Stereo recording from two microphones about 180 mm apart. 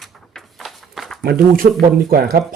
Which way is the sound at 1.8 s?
55° right (ahead or behind).